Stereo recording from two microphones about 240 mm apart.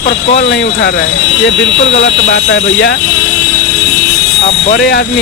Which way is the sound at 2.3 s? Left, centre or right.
Left.